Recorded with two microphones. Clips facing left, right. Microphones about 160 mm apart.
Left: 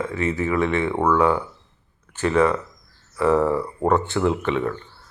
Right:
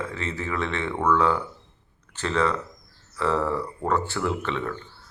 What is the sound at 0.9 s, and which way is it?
Speech, 30° left (ahead or behind).